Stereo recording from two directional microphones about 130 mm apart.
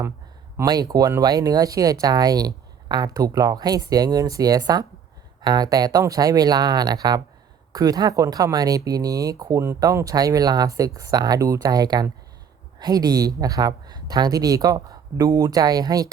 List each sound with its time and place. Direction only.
0.5 s speech: 30° right (ahead or behind)